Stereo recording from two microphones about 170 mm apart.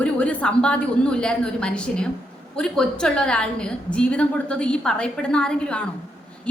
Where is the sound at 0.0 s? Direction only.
10° left (ahead or behind).